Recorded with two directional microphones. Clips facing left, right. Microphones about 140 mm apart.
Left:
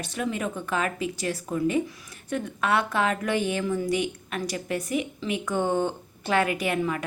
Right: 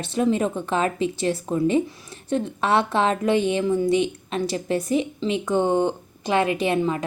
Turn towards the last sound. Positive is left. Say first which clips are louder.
# right 5 dB
turn(degrees=-25)  # may be behind; listen again after turning